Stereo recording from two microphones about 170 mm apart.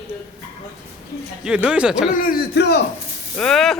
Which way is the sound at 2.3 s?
65° left (ahead or behind).